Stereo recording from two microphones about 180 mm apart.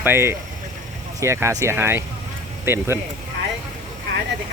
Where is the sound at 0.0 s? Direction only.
10° right (ahead or behind).